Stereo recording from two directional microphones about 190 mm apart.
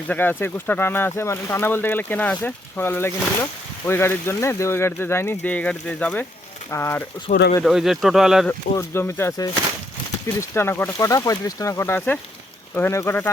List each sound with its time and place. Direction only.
0.1 s speech: 10° left (ahead or behind)
7.3 s speech: 40° left (ahead or behind)
7.6 s speech: centre (ahead or behind)
8.4 s speech: 15° left (ahead or behind)
10.5 s speech: 10° left (ahead or behind)